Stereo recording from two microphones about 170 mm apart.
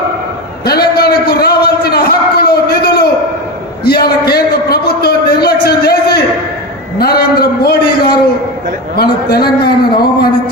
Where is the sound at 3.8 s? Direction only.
65° left (ahead or behind).